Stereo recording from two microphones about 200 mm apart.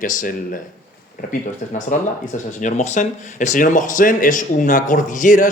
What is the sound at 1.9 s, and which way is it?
Speech, 40° left (ahead or behind).